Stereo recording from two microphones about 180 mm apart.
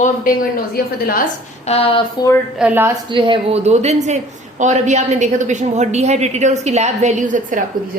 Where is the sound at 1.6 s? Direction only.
30° left (ahead or behind).